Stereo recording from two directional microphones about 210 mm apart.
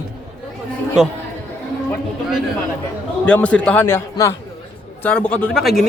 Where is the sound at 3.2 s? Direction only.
5° left (ahead or behind).